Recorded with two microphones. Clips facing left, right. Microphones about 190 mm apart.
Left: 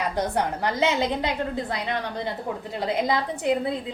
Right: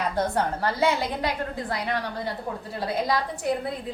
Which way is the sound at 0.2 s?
15° left (ahead or behind).